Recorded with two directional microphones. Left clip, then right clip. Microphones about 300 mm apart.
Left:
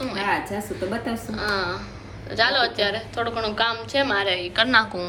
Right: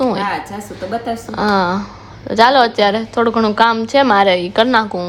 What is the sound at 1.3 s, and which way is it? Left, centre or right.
A woman's voice, right.